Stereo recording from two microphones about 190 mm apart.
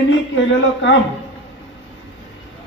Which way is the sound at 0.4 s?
75° left (ahead or behind).